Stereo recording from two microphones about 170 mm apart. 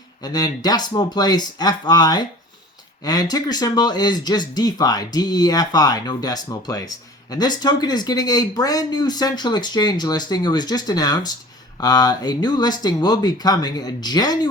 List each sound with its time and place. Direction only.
0.2 s speech: 25° left (ahead or behind)